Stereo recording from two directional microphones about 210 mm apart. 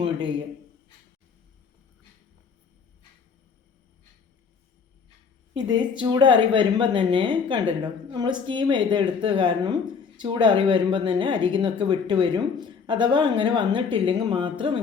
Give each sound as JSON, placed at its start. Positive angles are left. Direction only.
{"t": 0.0, "sound": "speech", "side_deg": -20}
{"t": 5.5, "sound": "speech", "side_deg": -20}